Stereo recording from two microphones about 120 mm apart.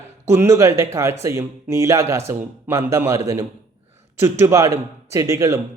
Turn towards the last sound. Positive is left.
turn(degrees=-25)  # may be behind; listen again after turning